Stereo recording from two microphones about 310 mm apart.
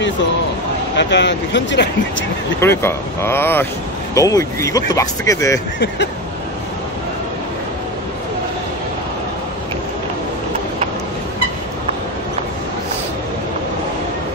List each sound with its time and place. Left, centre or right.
0.9 s speech: left
2.6 s speech: centre